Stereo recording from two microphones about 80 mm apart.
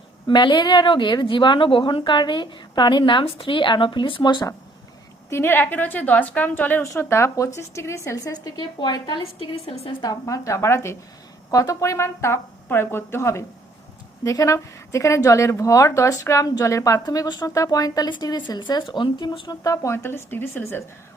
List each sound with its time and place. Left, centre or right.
0.3 s speech: left
5.3 s a woman's voice: left
7.0 s speech: left
10.0 s a woman's voice: left
19.5 s speech: left